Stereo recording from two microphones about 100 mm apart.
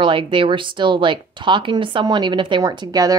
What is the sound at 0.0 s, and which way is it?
A woman's voice, 55° right (ahead or behind).